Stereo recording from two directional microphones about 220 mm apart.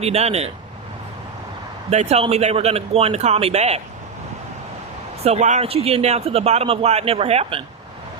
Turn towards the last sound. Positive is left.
turn(degrees=-25)  # may be behind; listen again after turning